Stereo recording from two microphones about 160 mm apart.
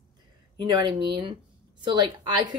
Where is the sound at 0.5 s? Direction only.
30° right (ahead or behind).